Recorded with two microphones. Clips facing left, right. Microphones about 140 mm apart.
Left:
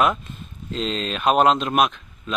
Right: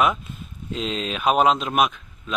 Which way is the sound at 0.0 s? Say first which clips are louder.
Left 1 dB; centre (ahead or behind).